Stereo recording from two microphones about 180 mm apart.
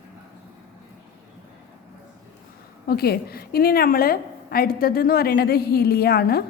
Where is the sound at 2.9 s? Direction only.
60° left (ahead or behind).